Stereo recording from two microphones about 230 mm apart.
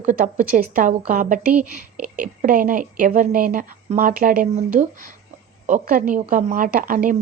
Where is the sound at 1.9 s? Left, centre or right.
Centre.